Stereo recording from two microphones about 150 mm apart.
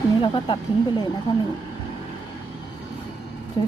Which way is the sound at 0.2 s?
30° left (ahead or behind).